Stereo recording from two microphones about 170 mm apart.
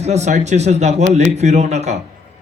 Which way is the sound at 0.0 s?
40° right (ahead or behind).